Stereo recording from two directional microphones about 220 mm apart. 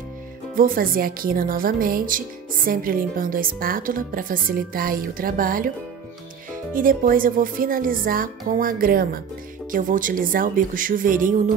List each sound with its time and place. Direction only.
0.6 s a woman's voice: 40° right (ahead or behind)
6.7 s a woman's voice: 40° right (ahead or behind)